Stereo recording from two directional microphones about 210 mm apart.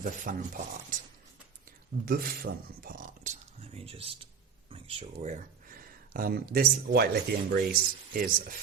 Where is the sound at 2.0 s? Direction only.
45° right (ahead or behind).